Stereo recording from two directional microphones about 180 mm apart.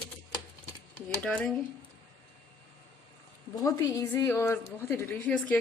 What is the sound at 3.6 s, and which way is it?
A woman's voice, 15° left (ahead or behind).